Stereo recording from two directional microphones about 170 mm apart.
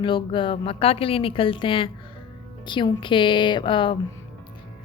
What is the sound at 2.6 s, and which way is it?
Music, 25° left (ahead or behind).